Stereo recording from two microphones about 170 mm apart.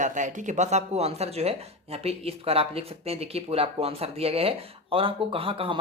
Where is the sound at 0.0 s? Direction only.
45° right (ahead or behind).